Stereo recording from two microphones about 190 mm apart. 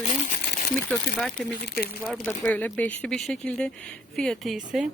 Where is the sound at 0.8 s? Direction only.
5° left (ahead or behind).